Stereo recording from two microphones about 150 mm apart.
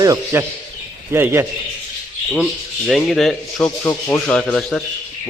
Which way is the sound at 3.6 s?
15° left (ahead or behind).